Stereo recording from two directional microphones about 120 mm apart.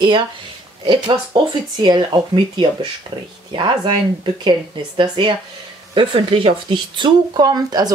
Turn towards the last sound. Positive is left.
turn(degrees=-35)  # may be behind; listen again after turning